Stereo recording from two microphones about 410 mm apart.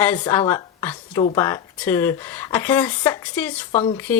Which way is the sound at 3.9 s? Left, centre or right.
Centre.